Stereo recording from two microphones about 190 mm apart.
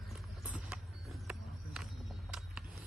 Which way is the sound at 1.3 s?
5° right (ahead or behind).